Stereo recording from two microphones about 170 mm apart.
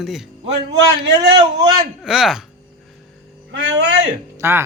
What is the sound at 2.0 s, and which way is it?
Speech, 5° right (ahead or behind).